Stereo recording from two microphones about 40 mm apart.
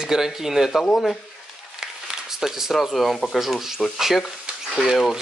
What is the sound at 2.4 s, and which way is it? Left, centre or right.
Speech, centre.